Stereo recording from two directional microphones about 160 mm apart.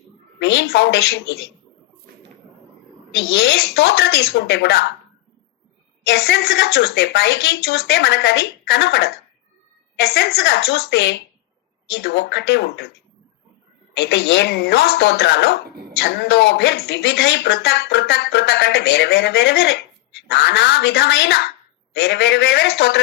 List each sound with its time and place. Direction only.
0.3 s speech: 90° left
3.1 s speech: 90° left
6.1 s speech: 90° left
14.0 s speech: 90° left